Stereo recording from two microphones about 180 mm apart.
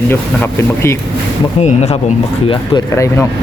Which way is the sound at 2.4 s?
25° left (ahead or behind).